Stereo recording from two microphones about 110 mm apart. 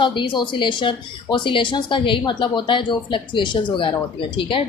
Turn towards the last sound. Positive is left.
turn(degrees=50)  # may be behind; listen again after turning